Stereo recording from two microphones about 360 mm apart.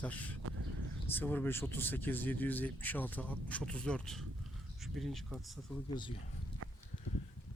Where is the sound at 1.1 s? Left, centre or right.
Centre.